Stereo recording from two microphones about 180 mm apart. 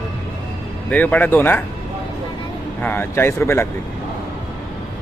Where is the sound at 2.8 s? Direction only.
10° left (ahead or behind).